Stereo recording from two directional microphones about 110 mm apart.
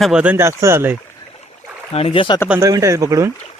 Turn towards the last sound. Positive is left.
turn(degrees=-30)  # may be behind; listen again after turning